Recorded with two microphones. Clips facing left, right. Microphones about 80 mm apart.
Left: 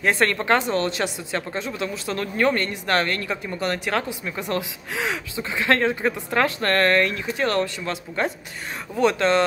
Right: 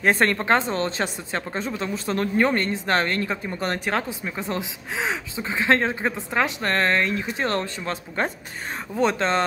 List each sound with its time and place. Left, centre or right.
0.0 s speech: right